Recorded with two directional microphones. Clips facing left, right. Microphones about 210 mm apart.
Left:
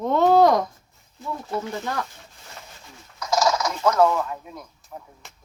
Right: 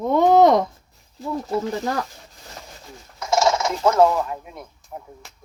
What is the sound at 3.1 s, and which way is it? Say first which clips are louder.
Speech: right 2 dB; 25° right (ahead or behind).